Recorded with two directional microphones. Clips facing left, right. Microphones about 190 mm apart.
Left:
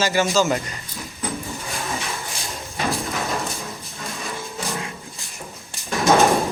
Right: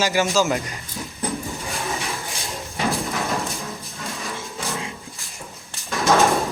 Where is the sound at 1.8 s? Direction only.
15° right (ahead or behind).